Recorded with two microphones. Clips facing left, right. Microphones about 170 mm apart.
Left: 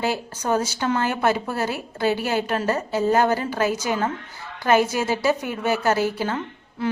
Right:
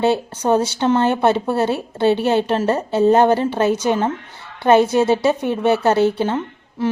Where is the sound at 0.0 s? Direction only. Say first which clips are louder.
Right 8 dB; 25° right (ahead or behind).